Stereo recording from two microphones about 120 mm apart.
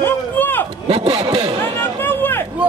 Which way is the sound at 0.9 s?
55° right (ahead or behind).